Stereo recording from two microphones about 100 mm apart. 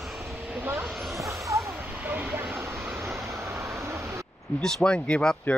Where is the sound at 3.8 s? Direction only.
25° right (ahead or behind).